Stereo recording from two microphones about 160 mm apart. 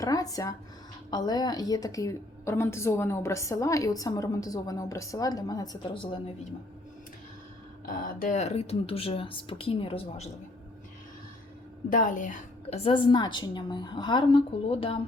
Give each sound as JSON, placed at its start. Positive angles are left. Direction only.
{"t": 0.0, "sound": "a woman's voice", "side_deg": 20}
{"t": 7.9, "sound": "speech", "side_deg": 60}
{"t": 11.9, "sound": "a woman's voice", "side_deg": 60}
{"t": 12.8, "sound": "a woman's voice", "side_deg": 30}